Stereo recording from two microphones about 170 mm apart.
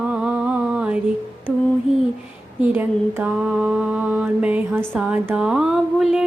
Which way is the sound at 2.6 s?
10° right (ahead or behind).